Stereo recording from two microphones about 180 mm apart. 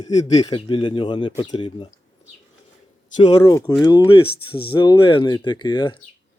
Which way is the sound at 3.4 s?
20° left (ahead or behind).